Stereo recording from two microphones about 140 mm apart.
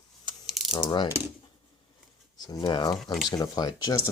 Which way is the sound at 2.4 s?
30° left (ahead or behind).